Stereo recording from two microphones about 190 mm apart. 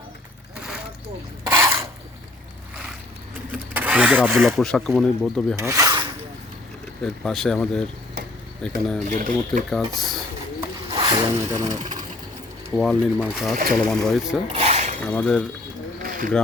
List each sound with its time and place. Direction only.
1.5 s a sound: 15° right (ahead or behind)
3.5 s speech: 5° right (ahead or behind)
5.5 s speech: 15° right (ahead or behind)
7.0 s speech: 5° left (ahead or behind)
9.0 s speech: 40° right (ahead or behind)
9.6 s speech: centre (ahead or behind)
10.9 s speech: 20° right (ahead or behind)
11.8 s pigeon: 40° right (ahead or behind)
12.7 s speech: 5° left (ahead or behind)
14.5 s mechanisms: 35° right (ahead or behind)
15.0 s speech: 5° left (ahead or behind)
16.0 s a sound: 45° right (ahead or behind)